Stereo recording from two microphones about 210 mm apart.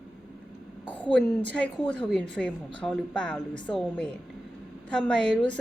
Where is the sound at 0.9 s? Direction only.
5° left (ahead or behind).